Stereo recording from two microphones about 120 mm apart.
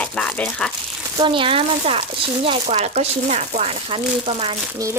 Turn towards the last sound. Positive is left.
turn(degrees=-50)  # may be behind; listen again after turning